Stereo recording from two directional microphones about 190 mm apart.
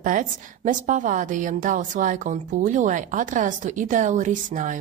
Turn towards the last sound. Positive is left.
turn(degrees=-40)  # may be behind; listen again after turning